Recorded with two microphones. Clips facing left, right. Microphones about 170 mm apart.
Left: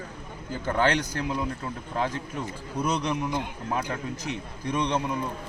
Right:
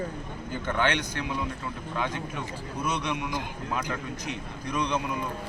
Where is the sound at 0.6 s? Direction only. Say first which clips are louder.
Left 3 dB; 35° left (ahead or behind).